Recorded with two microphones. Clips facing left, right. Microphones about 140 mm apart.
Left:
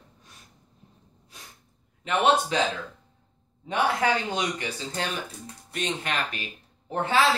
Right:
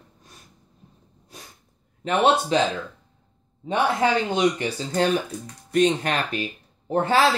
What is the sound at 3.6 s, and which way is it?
Speech, 25° right (ahead or behind).